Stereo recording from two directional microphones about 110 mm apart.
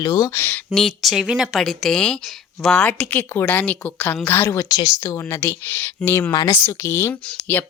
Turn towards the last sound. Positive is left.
turn(degrees=20)  # may be behind; listen again after turning